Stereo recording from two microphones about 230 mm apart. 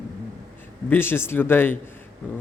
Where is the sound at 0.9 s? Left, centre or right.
Centre.